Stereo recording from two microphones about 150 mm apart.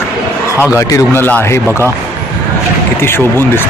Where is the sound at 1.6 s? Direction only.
15° right (ahead or behind).